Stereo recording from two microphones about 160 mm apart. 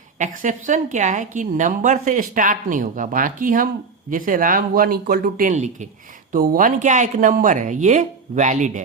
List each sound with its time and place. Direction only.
0.2 s a woman's voice: 50° right (ahead or behind)
6.3 s speech: 60° right (ahead or behind)